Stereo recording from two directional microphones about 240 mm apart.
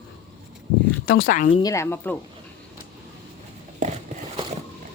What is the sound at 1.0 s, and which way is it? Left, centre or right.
Speech, left.